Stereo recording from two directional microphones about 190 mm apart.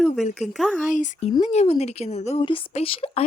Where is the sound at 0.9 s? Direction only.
40° left (ahead or behind).